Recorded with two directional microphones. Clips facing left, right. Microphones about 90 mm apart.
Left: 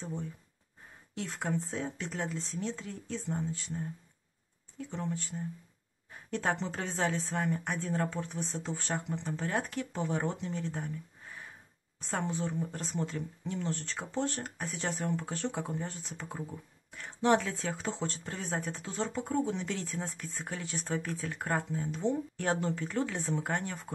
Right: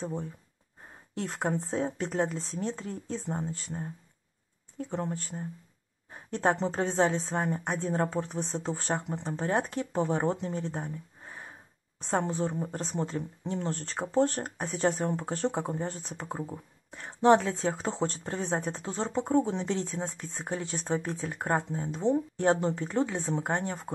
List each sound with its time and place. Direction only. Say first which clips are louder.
0.0 s speech: right 4 dB; 40° right (ahead or behind)
1.4 s speech: right 5 dB; 40° right (ahead or behind)
6.0 s speech: right 5 dB; 35° right (ahead or behind)